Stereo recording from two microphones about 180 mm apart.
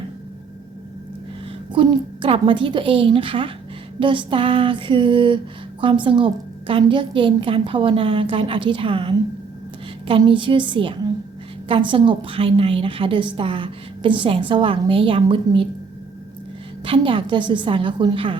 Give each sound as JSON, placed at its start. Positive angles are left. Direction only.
{"t": 1.7, "sound": "a woman's voice", "side_deg": -25}
{"t": 16.8, "sound": "a woman's voice", "side_deg": -30}